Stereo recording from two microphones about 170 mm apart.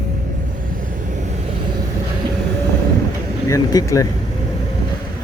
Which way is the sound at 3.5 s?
20° left (ahead or behind).